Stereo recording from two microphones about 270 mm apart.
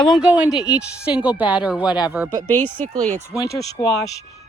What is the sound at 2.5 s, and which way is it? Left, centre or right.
Fowl, centre.